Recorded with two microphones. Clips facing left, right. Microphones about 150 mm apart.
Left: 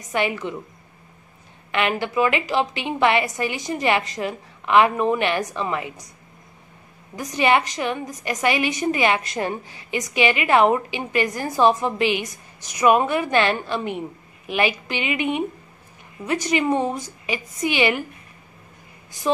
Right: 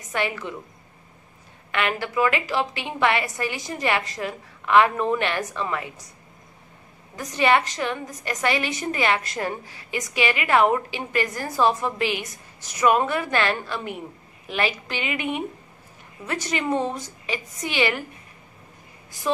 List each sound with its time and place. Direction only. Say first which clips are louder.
0.1 s a woman's voice: left 3 dB; 20° left (ahead or behind)
1.7 s a woman's voice: left 3 dB; 20° left (ahead or behind)
7.2 s a woman's voice: left 1 dB; 15° left (ahead or behind)